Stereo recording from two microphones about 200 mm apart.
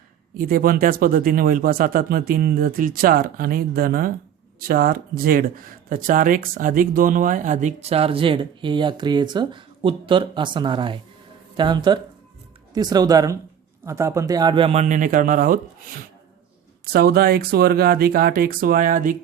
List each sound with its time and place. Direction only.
0.3 s speech: 45° right (ahead or behind)